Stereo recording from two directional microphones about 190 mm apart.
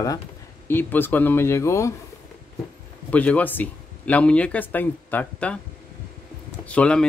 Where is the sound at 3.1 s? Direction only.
5° left (ahead or behind).